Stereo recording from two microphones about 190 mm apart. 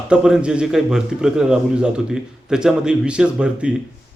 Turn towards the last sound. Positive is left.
turn(degrees=-5)  # may be behind; listen again after turning